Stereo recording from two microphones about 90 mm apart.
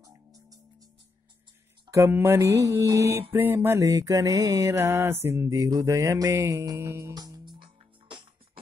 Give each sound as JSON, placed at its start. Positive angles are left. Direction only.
{"t": 0.0, "sound": "music", "side_deg": -40}
{"t": 1.9, "sound": "mantra", "side_deg": -30}
{"t": 7.2, "sound": "music", "side_deg": -45}